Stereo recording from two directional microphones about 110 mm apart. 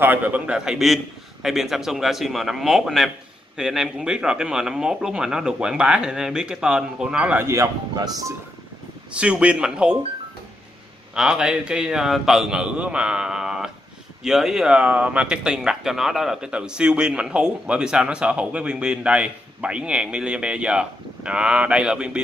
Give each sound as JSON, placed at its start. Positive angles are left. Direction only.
{"t": 0.0, "sound": "speech", "side_deg": -15}
{"t": 7.4, "sound": "speech", "side_deg": -25}
{"t": 9.1, "sound": "speech", "side_deg": -10}
{"t": 11.1, "sound": "speech", "side_deg": -5}